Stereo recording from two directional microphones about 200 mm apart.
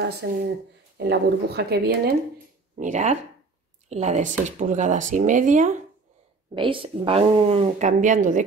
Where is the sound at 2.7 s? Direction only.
35° right (ahead or behind).